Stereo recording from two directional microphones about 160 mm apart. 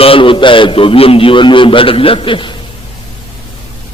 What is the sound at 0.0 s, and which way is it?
A man's voice, 35° left (ahead or behind).